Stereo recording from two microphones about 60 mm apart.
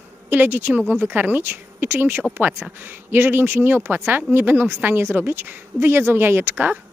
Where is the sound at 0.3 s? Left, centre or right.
Right.